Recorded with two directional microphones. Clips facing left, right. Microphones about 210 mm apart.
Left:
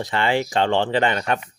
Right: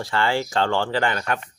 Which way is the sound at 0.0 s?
20° left (ahead or behind).